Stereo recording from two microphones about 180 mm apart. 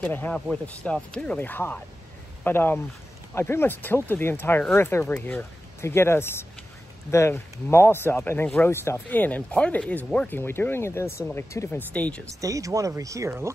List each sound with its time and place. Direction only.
0.0 s speech: 10° left (ahead or behind)
12.3 s speech: 20° right (ahead or behind)